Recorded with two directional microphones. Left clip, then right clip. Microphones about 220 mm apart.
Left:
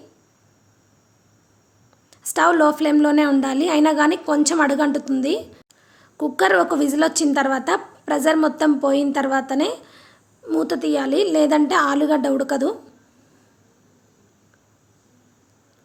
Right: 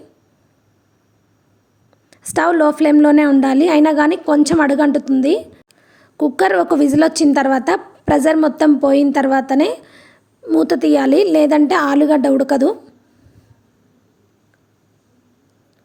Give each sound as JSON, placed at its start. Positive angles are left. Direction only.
{"t": 2.0, "sound": "a woman's voice", "side_deg": -25}